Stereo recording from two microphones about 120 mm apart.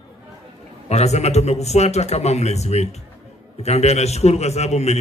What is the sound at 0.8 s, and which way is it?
A man's voice, 65° left (ahead or behind).